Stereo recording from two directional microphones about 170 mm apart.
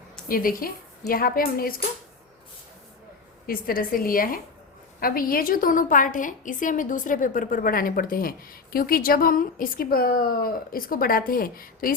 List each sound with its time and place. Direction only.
0.3 s a woman's voice: 55° left (ahead or behind)
3.4 s a woman's voice: 60° left (ahead or behind)